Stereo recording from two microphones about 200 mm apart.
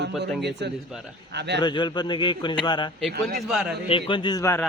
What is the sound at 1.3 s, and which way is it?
Speech, 60° right (ahead or behind).